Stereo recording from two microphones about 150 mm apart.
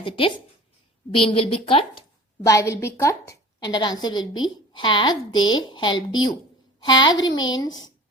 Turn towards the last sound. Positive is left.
turn(degrees=25)  # may be behind; listen again after turning